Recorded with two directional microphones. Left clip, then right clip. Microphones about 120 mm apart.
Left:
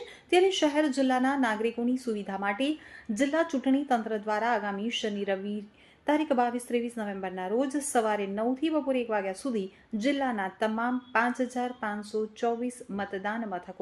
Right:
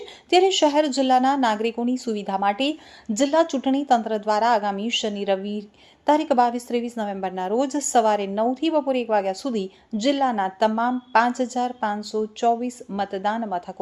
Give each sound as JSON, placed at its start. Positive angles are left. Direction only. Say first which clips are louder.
{"t": 0.3, "sound": "a woman's voice", "louder": "right 7 dB", "side_deg": -35}